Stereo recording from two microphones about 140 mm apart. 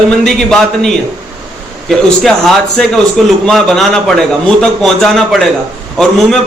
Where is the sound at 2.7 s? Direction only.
5° left (ahead or behind).